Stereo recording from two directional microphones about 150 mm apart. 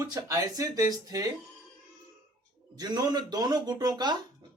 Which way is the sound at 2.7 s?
25° right (ahead or behind).